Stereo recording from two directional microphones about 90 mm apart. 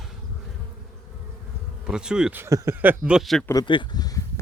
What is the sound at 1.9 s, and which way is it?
Insect, 10° right (ahead or behind).